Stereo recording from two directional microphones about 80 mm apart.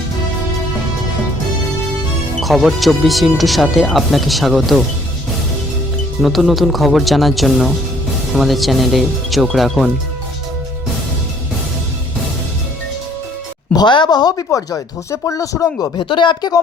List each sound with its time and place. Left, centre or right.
2.4 s speech: centre
6.2 s speech: centre
13.7 s speech: left
16.0 s speech: left